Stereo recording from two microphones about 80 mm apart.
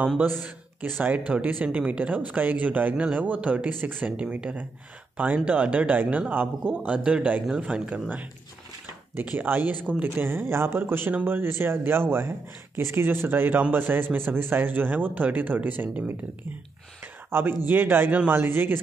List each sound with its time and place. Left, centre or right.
1.0 s speech: centre
9.2 s speech: right
17.3 s speech: right